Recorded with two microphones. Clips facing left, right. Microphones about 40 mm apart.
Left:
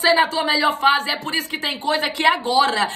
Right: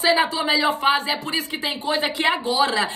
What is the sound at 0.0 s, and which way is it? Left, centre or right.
A woman's voice, left.